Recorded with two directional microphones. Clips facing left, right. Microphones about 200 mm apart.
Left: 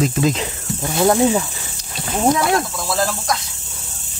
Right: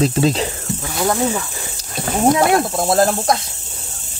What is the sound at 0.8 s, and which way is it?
Speech, 15° left (ahead or behind).